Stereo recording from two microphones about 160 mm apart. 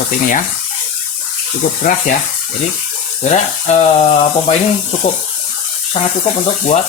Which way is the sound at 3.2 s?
45° left (ahead or behind).